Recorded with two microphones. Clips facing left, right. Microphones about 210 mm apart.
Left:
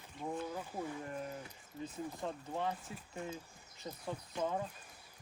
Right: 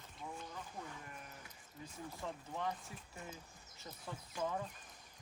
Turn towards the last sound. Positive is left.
turn(degrees=25)  # may be behind; listen again after turning